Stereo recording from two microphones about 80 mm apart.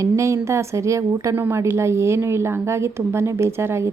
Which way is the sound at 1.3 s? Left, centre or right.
Right.